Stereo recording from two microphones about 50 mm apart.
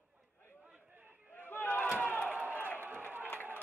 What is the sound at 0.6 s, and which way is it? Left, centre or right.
Chatter, right.